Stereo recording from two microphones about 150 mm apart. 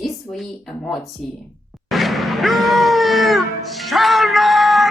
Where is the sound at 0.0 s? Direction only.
Centre (ahead or behind).